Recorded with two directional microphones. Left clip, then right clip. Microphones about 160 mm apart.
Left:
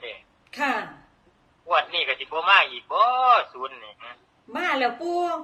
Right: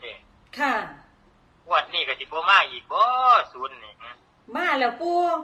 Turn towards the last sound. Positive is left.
turn(degrees=5)  # may be behind; listen again after turning